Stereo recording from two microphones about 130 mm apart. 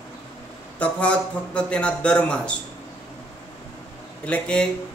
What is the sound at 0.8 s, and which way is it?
Speech, 10° left (ahead or behind).